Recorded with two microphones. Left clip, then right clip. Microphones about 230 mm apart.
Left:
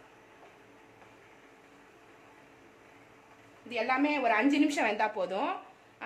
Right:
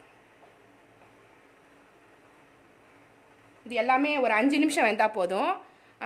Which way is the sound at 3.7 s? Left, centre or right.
Right.